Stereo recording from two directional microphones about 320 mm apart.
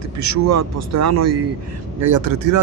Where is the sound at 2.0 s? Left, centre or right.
Right.